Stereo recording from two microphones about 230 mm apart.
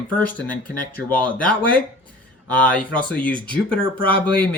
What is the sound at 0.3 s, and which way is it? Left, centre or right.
Speech, centre.